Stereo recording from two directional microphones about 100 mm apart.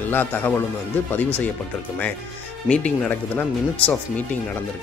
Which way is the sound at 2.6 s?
10° left (ahead or behind).